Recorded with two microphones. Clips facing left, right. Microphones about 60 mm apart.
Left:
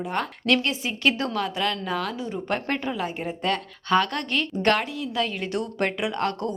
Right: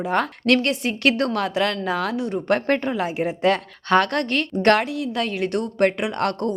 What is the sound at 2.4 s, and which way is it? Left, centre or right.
A woman's voice, right.